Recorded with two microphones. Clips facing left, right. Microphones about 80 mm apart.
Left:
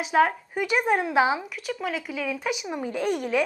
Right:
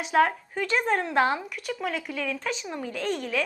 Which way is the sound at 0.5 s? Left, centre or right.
Centre.